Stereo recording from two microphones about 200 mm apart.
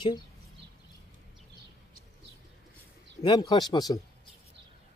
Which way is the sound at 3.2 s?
25° left (ahead or behind).